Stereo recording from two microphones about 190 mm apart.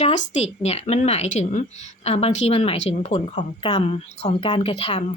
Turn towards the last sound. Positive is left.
turn(degrees=30)  # may be behind; listen again after turning